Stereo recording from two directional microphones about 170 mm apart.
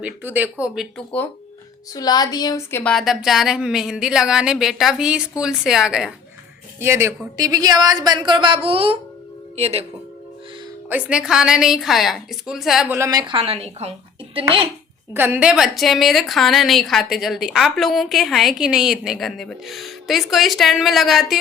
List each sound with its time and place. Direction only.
0.0 s speech: 10° right (ahead or behind)
1.9 s a woman's voice: 20° left (ahead or behind)
2.9 s a woman's voice: centre (ahead or behind)
6.7 s a woman's voice: 15° right (ahead or behind); by 9.8 s 40° right (ahead or behind)
10.8 s a woman's voice: 10° right (ahead or behind)
12.9 s a woman's voice: 20° right (ahead or behind)
15.1 s a woman's voice: 10° right (ahead or behind)